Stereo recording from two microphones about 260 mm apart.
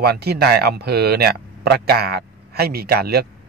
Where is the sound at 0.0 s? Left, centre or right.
Right.